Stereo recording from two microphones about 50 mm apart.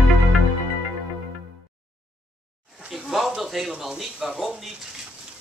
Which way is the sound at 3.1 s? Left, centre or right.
Centre.